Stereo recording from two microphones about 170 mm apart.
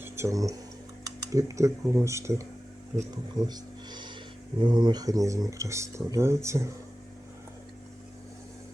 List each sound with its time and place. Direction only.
0.0 s speech: 15° right (ahead or behind)